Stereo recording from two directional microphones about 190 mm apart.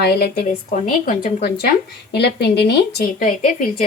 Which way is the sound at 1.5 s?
55° left (ahead or behind).